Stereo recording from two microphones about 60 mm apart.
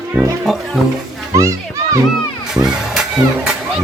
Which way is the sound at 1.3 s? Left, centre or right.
Right.